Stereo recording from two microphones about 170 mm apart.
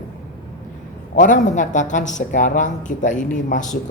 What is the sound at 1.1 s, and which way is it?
Speech, 50° left (ahead or behind).